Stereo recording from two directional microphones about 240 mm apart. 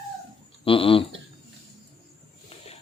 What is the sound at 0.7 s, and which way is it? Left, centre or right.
Speech, left.